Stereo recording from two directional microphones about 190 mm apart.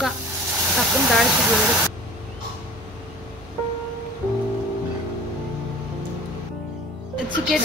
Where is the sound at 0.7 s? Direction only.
Centre (ahead or behind).